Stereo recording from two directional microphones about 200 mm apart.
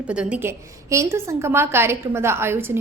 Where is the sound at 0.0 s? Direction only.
5° right (ahead or behind).